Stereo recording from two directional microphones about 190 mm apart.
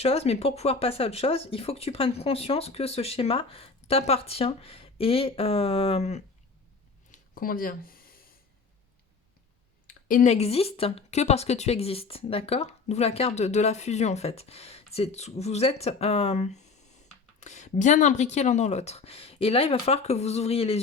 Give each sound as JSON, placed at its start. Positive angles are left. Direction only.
{"t": 0.0, "sound": "speech", "side_deg": 30}
{"t": 7.1, "sound": "speech", "side_deg": 45}
{"t": 9.8, "sound": "speech", "side_deg": 45}